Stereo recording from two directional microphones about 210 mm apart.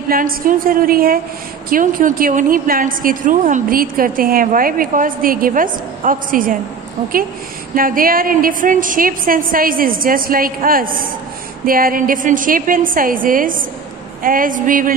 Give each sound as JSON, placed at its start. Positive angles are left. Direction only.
{"t": 0.1, "sound": "a woman's voice", "side_deg": -40}
{"t": 7.7, "sound": "a woman's voice", "side_deg": -40}